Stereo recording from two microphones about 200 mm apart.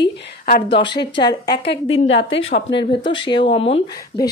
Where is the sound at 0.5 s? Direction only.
50° left (ahead or behind).